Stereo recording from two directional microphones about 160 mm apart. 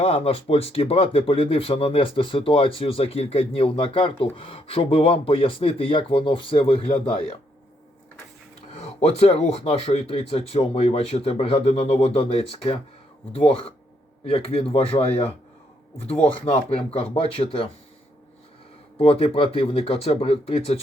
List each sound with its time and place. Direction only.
0.0 s speech: 40° left (ahead or behind)
9.0 s speech: 40° left (ahead or behind)
18.9 s speech: 35° left (ahead or behind)